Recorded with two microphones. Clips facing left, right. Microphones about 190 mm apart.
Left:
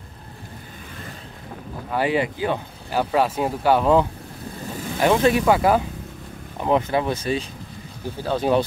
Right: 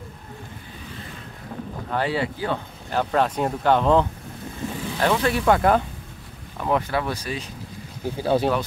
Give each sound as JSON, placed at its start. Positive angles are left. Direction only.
{"t": 1.9, "sound": "speech", "side_deg": 10}
{"t": 5.0, "sound": "speech", "side_deg": 20}
{"t": 5.4, "sound": "speech", "side_deg": 5}
{"t": 6.6, "sound": "speech", "side_deg": 20}
{"t": 8.2, "sound": "speech", "side_deg": -10}